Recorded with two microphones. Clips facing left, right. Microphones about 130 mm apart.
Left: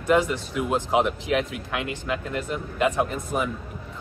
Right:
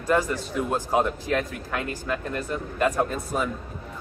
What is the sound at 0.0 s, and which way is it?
Speech, 15° left (ahead or behind).